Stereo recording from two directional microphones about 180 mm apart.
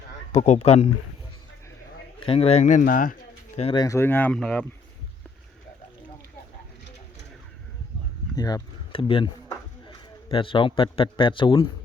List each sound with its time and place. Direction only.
0.4 s speech: 40° left (ahead or behind)
2.2 s speech: 35° left (ahead or behind); by 3.6 s 50° left (ahead or behind)
3.6 s speech: 30° left (ahead or behind)
3.8 s speech: 15° left (ahead or behind)
8.4 s a man's voice: 20° left (ahead or behind)